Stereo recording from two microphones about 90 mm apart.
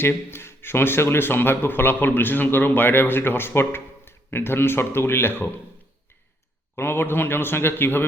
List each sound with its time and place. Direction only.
0.0 s a man's voice: 25° left (ahead or behind)
6.7 s a man's voice: 25° left (ahead or behind)